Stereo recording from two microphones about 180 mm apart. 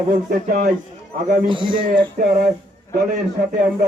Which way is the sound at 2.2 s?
45° right (ahead or behind).